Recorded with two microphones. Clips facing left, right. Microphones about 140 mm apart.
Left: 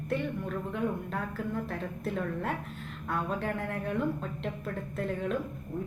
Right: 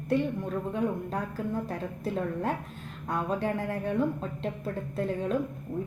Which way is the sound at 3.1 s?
35° right (ahead or behind).